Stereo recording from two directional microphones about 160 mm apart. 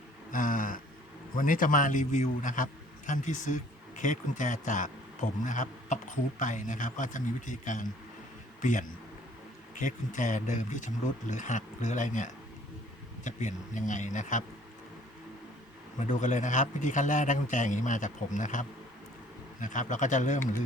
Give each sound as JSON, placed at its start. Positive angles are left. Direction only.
{"t": 0.3, "sound": "a sound", "side_deg": 55}
{"t": 1.4, "sound": "speech", "side_deg": 55}
{"t": 9.7, "sound": "speech", "side_deg": 50}
{"t": 16.0, "sound": "speech", "side_deg": 50}